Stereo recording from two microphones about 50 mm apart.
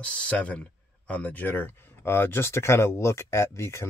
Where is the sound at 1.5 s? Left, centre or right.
Left.